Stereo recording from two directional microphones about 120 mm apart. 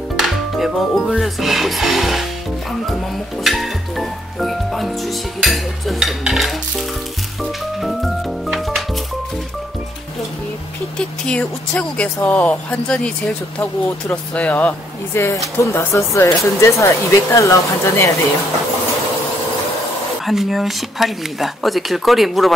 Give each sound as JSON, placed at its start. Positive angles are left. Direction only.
{"t": 0.1, "sound": "music", "side_deg": 0}
{"t": 3.4, "sound": "speech", "side_deg": 0}
{"t": 7.8, "sound": "music", "side_deg": 0}
{"t": 11.2, "sound": "speech", "side_deg": 10}
{"t": 20.2, "sound": "speech", "side_deg": 0}